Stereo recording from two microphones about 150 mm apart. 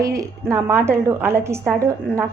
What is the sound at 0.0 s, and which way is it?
A woman's voice, 20° right (ahead or behind).